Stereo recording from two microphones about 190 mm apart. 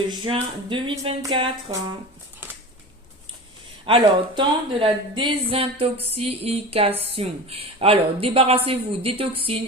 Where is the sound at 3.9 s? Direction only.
25° right (ahead or behind).